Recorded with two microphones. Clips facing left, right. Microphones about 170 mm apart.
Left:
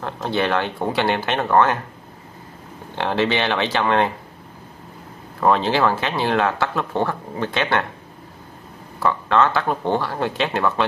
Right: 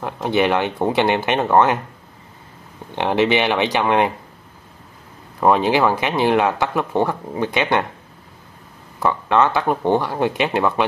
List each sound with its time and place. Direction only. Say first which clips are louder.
0.0 s speech: right 4 dB; 15° right (ahead or behind)
3.0 s speech: right 3 dB; 15° right (ahead or behind)
5.4 s speech: right 2 dB; 15° right (ahead or behind)
9.0 s speech: right 1 dB; 15° right (ahead or behind)